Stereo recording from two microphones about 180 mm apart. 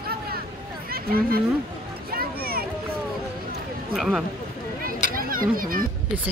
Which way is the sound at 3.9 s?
Centre (ahead or behind).